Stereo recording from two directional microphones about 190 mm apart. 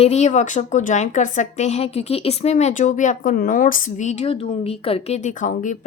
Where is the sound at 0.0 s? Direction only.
35° left (ahead or behind).